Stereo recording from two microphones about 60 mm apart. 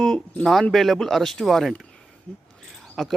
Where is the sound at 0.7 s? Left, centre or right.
Centre.